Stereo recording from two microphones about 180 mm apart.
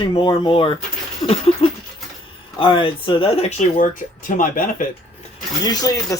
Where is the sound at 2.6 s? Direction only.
30° left (ahead or behind); by 4.6 s 50° left (ahead or behind).